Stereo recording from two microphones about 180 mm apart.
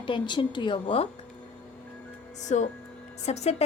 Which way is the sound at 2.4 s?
40° left (ahead or behind).